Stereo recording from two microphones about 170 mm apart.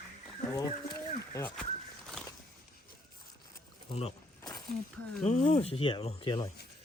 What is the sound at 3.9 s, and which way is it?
Speech, 35° left (ahead or behind).